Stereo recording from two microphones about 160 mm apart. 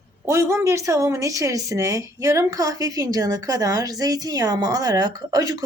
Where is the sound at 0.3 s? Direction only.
20° right (ahead or behind).